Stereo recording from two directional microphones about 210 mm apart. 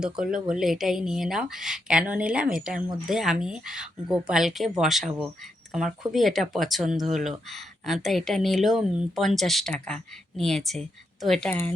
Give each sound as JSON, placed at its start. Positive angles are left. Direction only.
{"t": 0.0, "sound": "speech", "side_deg": -5}